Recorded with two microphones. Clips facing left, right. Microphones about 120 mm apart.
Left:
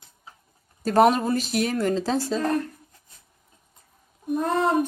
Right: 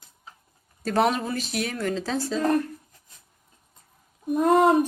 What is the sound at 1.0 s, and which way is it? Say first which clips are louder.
Speech: left 5 dB; 35° left (ahead or behind).